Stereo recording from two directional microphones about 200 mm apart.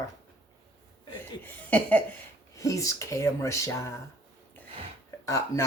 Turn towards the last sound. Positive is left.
turn(degrees=15)  # may be behind; listen again after turning